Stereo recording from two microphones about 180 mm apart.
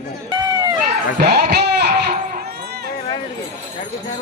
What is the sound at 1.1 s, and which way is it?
Speech, 60° right (ahead or behind).